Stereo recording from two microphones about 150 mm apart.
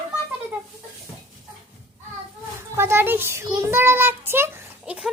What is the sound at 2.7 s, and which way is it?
Speech, 15° right (ahead or behind).